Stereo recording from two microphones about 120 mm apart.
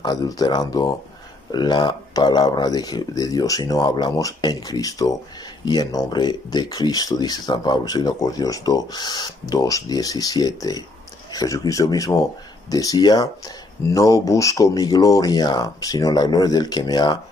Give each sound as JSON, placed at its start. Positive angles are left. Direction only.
{"t": 0.0, "sound": "speech", "side_deg": 35}